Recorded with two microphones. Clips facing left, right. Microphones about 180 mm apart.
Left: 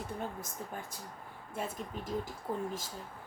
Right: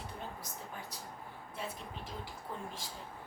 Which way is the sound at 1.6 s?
50° left (ahead or behind).